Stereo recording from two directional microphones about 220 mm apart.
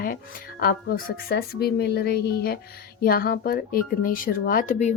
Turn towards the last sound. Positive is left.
turn(degrees=35)  # may be behind; listen again after turning